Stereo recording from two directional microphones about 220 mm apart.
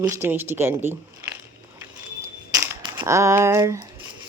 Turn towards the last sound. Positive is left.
turn(degrees=-15)  # may be behind; listen again after turning